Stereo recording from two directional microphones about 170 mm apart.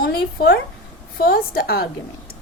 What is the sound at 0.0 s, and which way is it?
A woman's voice, 65° left (ahead or behind).